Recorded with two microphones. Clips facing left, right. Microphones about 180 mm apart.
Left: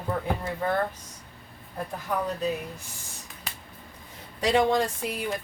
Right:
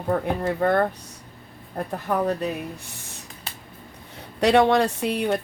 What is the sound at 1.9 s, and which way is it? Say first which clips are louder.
Speech: right 6 dB; 65° right (ahead or behind).